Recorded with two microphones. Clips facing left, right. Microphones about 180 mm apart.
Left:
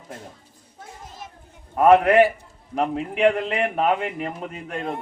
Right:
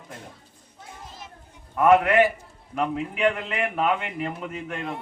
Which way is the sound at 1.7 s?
35° left (ahead or behind).